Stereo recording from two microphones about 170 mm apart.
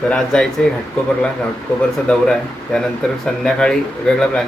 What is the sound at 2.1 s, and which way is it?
Speech, 5° left (ahead or behind).